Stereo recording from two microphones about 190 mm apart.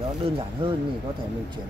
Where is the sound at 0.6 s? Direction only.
25° right (ahead or behind).